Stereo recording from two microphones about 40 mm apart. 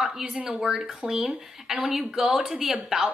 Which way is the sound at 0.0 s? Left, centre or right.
Centre.